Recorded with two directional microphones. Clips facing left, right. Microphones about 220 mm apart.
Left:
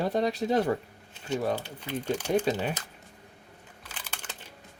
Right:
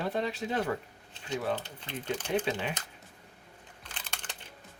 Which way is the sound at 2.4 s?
40° left (ahead or behind).